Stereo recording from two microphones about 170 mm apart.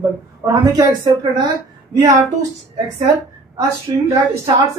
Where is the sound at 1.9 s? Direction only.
20° right (ahead or behind).